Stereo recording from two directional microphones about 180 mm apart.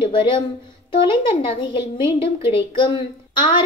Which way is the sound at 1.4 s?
25° left (ahead or behind).